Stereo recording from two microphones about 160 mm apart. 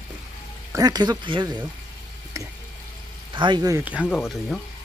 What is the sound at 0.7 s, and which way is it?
Speech, 25° right (ahead or behind).